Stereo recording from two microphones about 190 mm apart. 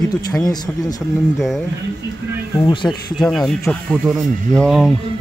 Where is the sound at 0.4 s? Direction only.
20° left (ahead or behind).